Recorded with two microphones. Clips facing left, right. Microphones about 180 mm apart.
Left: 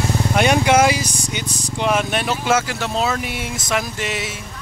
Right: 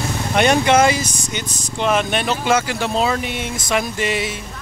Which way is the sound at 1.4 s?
35° left (ahead or behind).